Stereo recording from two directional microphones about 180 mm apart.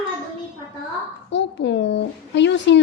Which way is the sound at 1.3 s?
75° left (ahead or behind).